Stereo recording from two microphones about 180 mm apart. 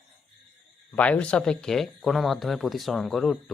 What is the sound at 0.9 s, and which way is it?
Speech, 10° left (ahead or behind).